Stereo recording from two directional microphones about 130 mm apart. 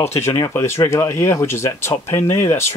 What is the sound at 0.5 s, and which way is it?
Speech, 20° left (ahead or behind).